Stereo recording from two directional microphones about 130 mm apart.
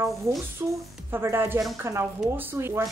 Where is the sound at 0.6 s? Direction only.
20° right (ahead or behind).